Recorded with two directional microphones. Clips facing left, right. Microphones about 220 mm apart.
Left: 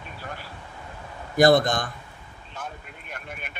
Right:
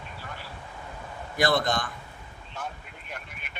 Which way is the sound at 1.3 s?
45° left (ahead or behind).